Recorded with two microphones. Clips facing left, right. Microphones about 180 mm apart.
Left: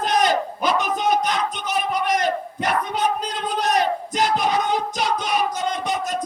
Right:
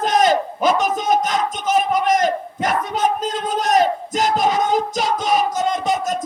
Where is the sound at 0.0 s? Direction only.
45° right (ahead or behind).